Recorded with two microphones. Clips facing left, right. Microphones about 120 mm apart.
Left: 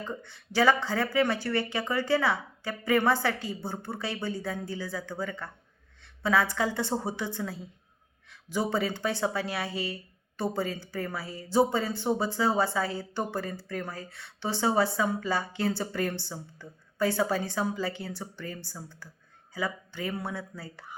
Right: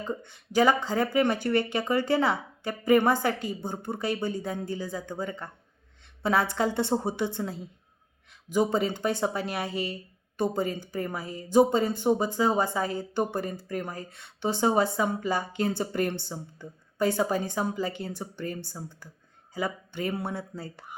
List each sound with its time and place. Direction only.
0.0 s a woman's voice: 20° right (ahead or behind)